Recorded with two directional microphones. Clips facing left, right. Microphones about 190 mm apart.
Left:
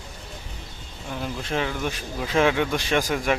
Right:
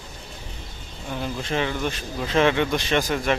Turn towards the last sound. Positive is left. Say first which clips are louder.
# even
turn(degrees=10)  # may be behind; listen again after turning